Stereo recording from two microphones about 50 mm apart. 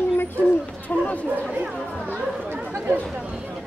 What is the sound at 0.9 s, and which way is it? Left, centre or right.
Speech, left.